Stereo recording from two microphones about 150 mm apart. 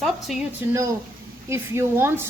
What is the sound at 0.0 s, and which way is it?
Speech, centre (ahead or behind).